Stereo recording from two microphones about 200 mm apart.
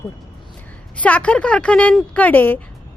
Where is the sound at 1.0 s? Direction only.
5° left (ahead or behind).